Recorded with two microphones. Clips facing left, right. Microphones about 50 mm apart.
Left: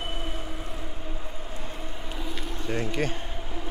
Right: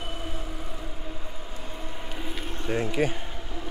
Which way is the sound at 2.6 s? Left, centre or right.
Centre.